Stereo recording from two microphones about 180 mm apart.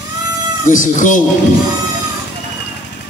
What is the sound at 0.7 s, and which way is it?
Speech, 45° left (ahead or behind).